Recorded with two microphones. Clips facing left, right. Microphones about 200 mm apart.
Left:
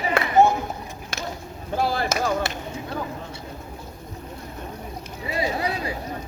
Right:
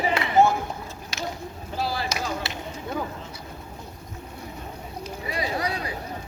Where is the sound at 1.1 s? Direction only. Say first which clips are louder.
Even; 50° left (ahead or behind).